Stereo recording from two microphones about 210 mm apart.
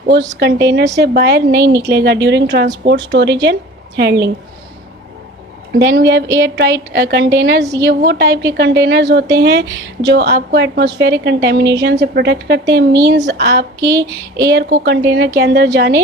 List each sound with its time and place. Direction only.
0.3 s a woman's voice: 55° right (ahead or behind)
5.8 s a woman's voice: 55° right (ahead or behind)
13.8 s a sound: 15° right (ahead or behind)
14.5 s a woman's voice: 55° right (ahead or behind)